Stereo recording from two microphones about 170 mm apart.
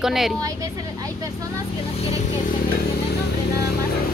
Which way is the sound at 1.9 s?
35° left (ahead or behind).